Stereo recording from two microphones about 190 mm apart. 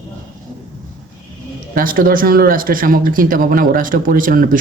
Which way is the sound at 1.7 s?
45° right (ahead or behind).